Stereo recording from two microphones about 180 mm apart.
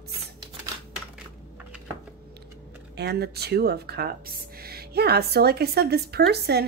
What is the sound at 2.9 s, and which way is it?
Speech, 65° right (ahead or behind).